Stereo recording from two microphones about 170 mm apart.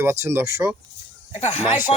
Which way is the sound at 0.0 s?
15° right (ahead or behind).